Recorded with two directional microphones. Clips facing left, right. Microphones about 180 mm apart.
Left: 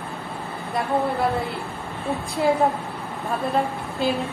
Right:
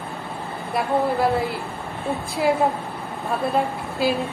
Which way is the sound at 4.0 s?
5° right (ahead or behind).